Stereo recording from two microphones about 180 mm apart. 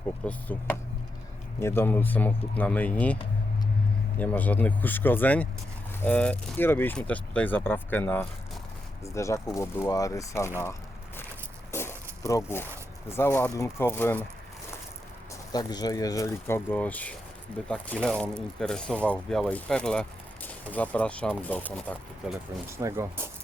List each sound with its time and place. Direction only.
0.3 s speech: 10° left (ahead or behind)
4.2 s speech: 10° left (ahead or behind)
11.7 s a sound: 15° left (ahead or behind)
13.1 s speech: 15° left (ahead or behind)
15.5 s speech: 20° left (ahead or behind); by 22.4 s 5° left (ahead or behind)
22.8 s speech: 15° right (ahead or behind)